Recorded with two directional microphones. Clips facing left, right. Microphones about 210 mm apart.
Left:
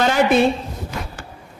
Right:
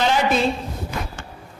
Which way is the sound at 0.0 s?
50° left (ahead or behind).